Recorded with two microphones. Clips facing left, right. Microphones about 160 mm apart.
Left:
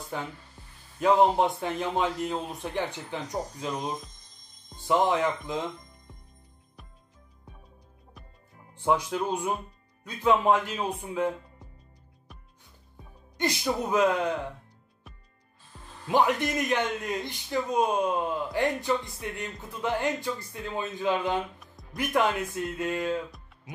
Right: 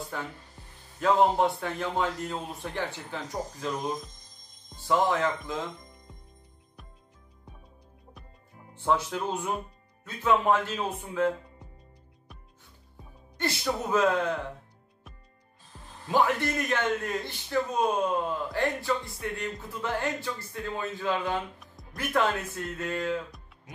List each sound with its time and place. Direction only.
0.1 s a man's voice: 20° left (ahead or behind)
4.8 s a man's voice: 15° left (ahead or behind)
6.8 s music: centre (ahead or behind)
8.8 s a man's voice: 15° left (ahead or behind)
13.4 s a man's voice: 15° left (ahead or behind)
16.1 s a man's voice: 20° left (ahead or behind)